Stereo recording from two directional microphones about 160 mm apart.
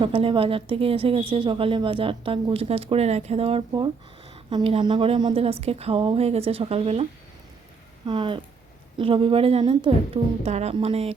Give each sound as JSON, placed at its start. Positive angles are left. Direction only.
{"t": 0.0, "sound": "a woman's voice", "side_deg": -35}
{"t": 10.4, "sound": "a woman's voice", "side_deg": -40}